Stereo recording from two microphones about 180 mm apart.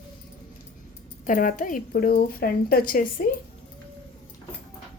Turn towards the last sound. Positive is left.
turn(degrees=50)  # may be behind; listen again after turning